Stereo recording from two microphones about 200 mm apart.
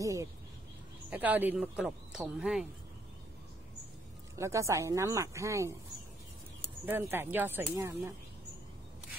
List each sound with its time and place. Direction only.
0.0 s a man's voice: 15° right (ahead or behind)
4.4 s speech: 15° right (ahead or behind)
6.9 s speech: 10° right (ahead or behind)